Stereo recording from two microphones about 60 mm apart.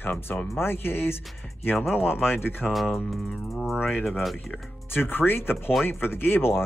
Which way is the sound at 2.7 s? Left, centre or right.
Centre.